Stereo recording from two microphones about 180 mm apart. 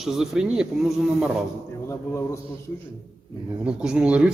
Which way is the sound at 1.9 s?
15° left (ahead or behind).